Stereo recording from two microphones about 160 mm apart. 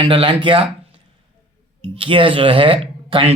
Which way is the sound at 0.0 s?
35° right (ahead or behind).